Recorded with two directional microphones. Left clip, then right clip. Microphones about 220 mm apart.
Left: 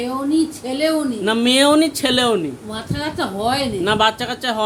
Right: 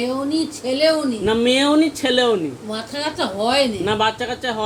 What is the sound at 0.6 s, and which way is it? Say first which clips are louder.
Speech: right 2 dB; 15° left (ahead or behind).